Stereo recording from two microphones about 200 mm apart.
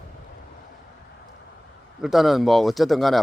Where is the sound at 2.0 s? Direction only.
Centre (ahead or behind).